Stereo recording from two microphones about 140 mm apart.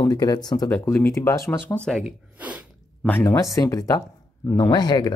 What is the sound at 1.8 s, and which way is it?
Speech, 5° left (ahead or behind).